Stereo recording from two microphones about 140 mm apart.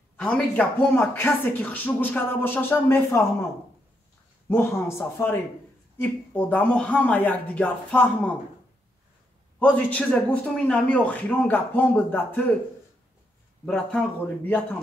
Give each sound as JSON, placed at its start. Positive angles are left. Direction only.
{"t": 0.2, "sound": "speech", "side_deg": 10}
{"t": 4.5, "sound": "speech", "side_deg": 15}
{"t": 9.6, "sound": "speech", "side_deg": 10}
{"t": 13.7, "sound": "speech", "side_deg": 5}